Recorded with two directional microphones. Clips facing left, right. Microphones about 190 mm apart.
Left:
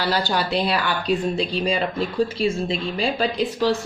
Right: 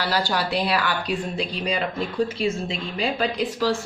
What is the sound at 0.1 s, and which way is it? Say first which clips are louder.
Speech: left 1 dB; 25° left (ahead or behind).